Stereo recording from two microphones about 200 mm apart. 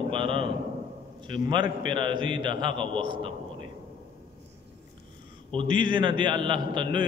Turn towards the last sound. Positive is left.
turn(degrees=-25)  # may be behind; listen again after turning